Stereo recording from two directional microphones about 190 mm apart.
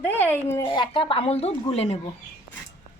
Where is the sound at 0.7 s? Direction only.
25° left (ahead or behind).